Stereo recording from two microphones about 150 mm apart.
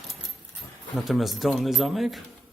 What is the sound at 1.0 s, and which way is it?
Speech, centre (ahead or behind).